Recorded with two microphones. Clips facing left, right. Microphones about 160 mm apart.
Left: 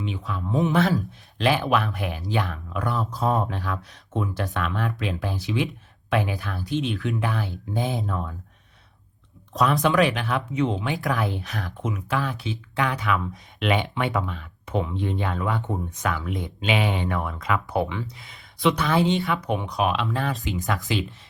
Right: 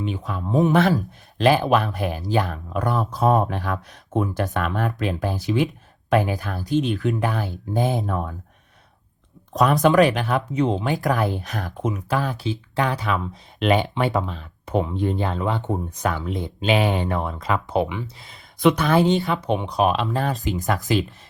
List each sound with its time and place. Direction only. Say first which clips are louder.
0.0 s speech: right 3 dB; 45° right (ahead or behind)
1.4 s speech: right 4 dB; 40° right (ahead or behind)
2.9 s speech: right 5 dB; 60° right (ahead or behind)
9.5 s speech: right 4 dB; 45° right (ahead or behind)
17.2 s speech: right 2 dB; 30° right (ahead or behind)
17.7 s speech: right 3 dB; 20° right (ahead or behind)
18.2 s speech: right 5 dB; 40° right (ahead or behind)
19.2 s speech: right 3 dB; 25° right (ahead or behind); by 21.0 s 45° right (ahead or behind)